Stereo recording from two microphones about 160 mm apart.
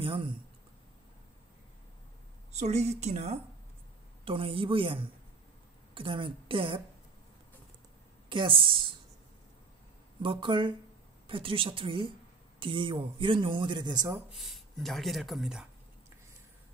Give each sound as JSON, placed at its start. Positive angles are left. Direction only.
{"t": 0.0, "sound": "speech", "side_deg": -35}
{"t": 2.5, "sound": "a woman's voice", "side_deg": -45}
{"t": 8.3, "sound": "speech", "side_deg": -30}
{"t": 10.2, "sound": "speech", "side_deg": -30}
{"t": 14.3, "sound": "speech", "side_deg": 0}